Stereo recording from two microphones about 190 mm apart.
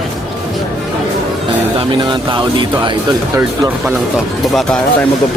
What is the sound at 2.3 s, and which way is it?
Speech, 25° right (ahead or behind).